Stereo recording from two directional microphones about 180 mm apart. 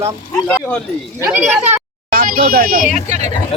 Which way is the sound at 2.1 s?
50° right (ahead or behind).